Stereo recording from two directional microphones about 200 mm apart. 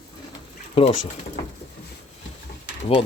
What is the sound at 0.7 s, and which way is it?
Speech, 30° left (ahead or behind).